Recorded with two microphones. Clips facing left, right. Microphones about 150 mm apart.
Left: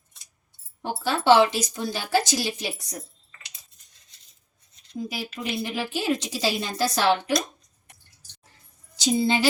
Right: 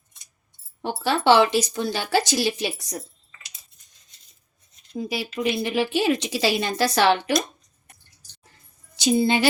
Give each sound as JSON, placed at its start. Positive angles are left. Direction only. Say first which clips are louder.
{"t": 0.8, "sound": "speech", "louder": "right 3 dB", "side_deg": -70}
{"t": 4.9, "sound": "speech", "louder": "right 4 dB", "side_deg": -85}
{"t": 9.0, "sound": "a woman's voice", "louder": "right 3 dB", "side_deg": -60}